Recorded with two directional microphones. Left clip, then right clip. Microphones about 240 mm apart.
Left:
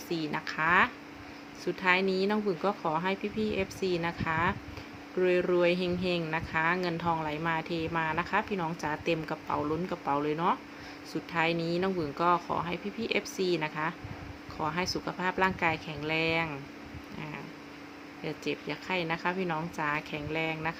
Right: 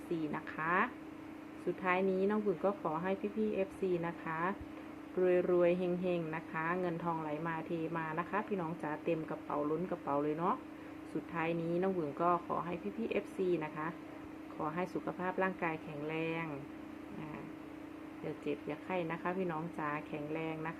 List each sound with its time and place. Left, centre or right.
0.1 s a woman's voice: centre
18.4 s a woman's voice: centre